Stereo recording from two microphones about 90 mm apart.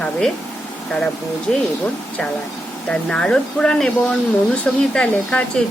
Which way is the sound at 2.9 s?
10° left (ahead or behind).